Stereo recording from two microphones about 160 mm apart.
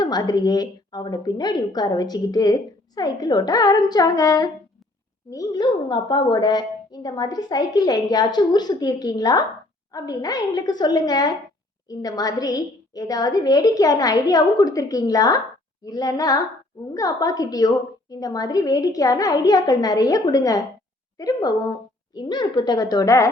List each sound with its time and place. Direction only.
0.0 s a woman's voice: 25° left (ahead or behind)